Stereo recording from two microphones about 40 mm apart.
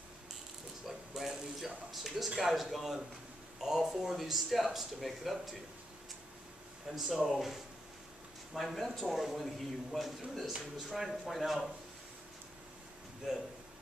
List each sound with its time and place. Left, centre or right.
0.8 s ratchet: centre
1.6 s speech: centre
6.9 s speech: centre
7.3 s speech: centre
8.5 s speech: centre
13.2 s speech: centre